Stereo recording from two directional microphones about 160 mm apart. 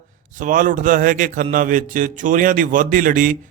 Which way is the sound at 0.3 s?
55° right (ahead or behind).